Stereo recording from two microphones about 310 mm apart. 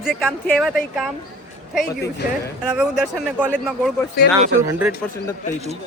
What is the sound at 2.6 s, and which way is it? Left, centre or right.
Speech, centre.